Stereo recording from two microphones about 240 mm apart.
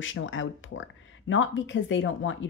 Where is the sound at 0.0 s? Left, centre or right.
Left.